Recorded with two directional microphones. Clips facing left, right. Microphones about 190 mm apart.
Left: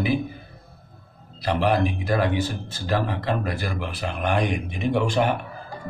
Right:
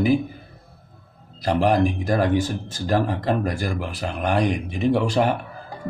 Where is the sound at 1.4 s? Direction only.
45° right (ahead or behind).